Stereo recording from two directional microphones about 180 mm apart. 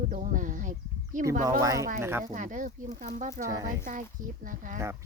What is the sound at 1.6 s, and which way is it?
Speech, 20° right (ahead or behind).